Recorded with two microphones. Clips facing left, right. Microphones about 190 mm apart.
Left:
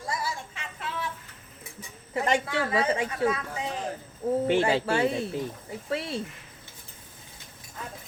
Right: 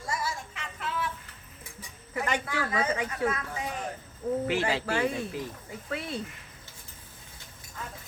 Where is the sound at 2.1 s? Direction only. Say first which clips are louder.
Left 4 dB; 30° left (ahead or behind).